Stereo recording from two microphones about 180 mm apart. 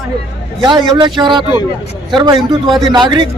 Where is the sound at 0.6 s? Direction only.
25° right (ahead or behind).